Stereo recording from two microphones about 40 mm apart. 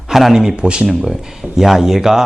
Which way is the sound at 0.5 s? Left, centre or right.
Right.